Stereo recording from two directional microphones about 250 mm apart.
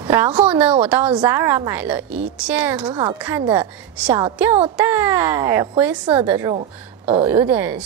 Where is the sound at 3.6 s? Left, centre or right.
Centre.